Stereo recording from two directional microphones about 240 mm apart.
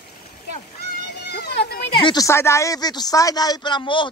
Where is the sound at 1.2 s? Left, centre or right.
Left.